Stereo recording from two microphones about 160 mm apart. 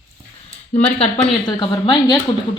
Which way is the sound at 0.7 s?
40° left (ahead or behind).